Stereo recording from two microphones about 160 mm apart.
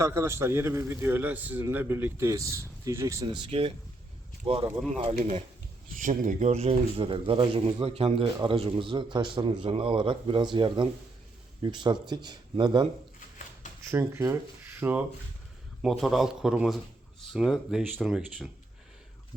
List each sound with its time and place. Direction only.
0.0 s a man's voice: 15° right (ahead or behind); by 5.4 s 40° right (ahead or behind)
5.9 s speech: 55° right (ahead or behind); by 12.9 s 25° right (ahead or behind)
13.9 s a man's voice: 15° right (ahead or behind)
15.8 s speech: centre (ahead or behind)